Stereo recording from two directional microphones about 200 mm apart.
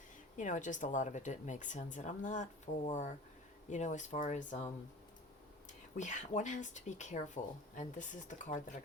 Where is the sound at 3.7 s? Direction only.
35° left (ahead or behind).